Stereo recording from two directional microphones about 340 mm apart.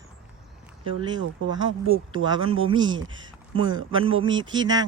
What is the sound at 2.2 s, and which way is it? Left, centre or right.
Speech, centre.